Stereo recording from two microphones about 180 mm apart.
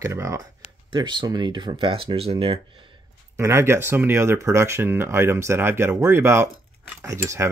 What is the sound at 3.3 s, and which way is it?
Speech, 15° right (ahead or behind).